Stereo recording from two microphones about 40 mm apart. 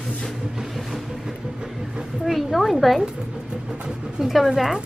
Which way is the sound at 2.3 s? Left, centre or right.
Centre.